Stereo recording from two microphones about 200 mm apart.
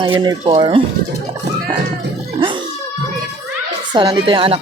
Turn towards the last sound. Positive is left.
turn(degrees=-25)  # may be behind; listen again after turning